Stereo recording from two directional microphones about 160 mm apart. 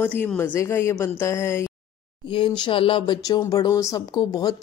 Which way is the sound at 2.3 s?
30° left (ahead or behind).